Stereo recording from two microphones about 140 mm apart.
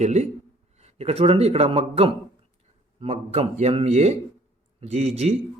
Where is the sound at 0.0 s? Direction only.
55° right (ahead or behind).